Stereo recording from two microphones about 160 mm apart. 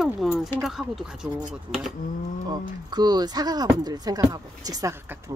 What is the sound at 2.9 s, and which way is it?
Speech, 25° right (ahead or behind).